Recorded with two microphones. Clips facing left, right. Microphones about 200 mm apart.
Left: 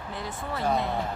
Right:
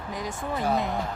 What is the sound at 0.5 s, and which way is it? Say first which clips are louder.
Speech: right 1 dB; 15° right (ahead or behind).